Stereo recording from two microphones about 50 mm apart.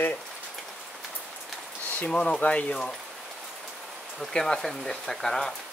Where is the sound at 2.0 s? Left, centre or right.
Centre.